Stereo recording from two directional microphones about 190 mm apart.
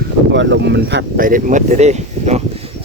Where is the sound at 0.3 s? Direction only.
70° right (ahead or behind); by 2.4 s 35° right (ahead or behind).